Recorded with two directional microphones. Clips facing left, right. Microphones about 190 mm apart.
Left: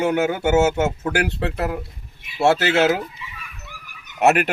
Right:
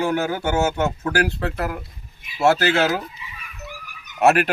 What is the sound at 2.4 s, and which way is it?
Speech, 25° left (ahead or behind).